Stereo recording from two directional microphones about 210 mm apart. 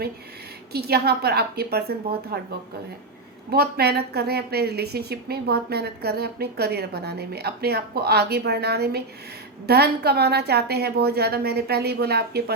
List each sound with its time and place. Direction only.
0.7 s a woman's voice: 50° right (ahead or behind)